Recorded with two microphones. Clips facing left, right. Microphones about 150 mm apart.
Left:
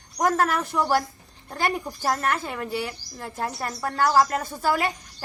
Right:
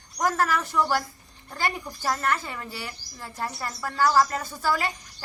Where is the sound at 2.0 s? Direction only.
50° left (ahead or behind).